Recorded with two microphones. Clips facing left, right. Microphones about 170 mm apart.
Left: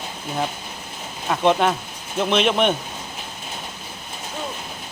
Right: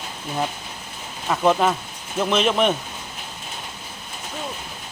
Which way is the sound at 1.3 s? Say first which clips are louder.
Even; centre (ahead or behind).